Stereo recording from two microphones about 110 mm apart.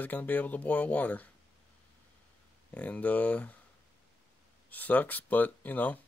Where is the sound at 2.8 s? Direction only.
15° left (ahead or behind).